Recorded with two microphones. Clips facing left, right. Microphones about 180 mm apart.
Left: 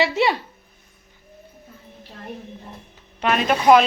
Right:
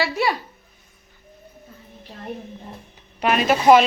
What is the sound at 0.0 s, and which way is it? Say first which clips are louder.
Speech: left 3 dB; 25° left (ahead or behind).